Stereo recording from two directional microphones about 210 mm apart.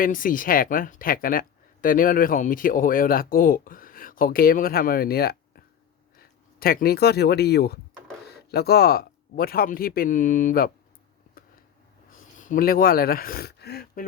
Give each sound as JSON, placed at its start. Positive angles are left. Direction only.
{"t": 0.0, "sound": "speech", "side_deg": 40}
{"t": 12.1, "sound": "speech", "side_deg": 40}